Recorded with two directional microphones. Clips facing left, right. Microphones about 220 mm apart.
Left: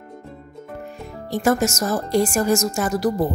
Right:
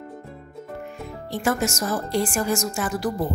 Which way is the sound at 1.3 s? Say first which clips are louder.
Left 5 dB; 40° left (ahead or behind).